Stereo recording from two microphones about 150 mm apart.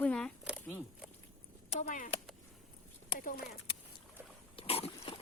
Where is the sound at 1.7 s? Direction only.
55° left (ahead or behind).